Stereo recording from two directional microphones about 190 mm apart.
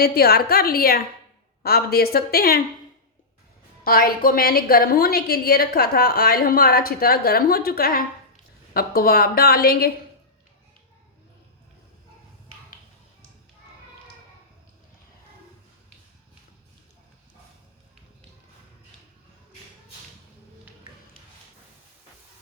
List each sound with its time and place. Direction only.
0.0 s a woman's voice: 55° left (ahead or behind)
3.8 s a woman's voice: 50° left (ahead or behind)